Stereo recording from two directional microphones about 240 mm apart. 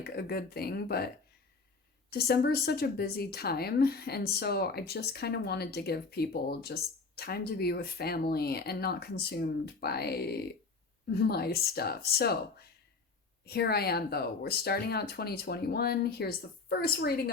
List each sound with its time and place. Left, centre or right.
0.0 s speech: left